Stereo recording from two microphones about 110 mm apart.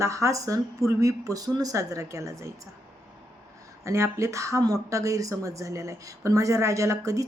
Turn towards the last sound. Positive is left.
turn(degrees=-30)  # may be behind; listen again after turning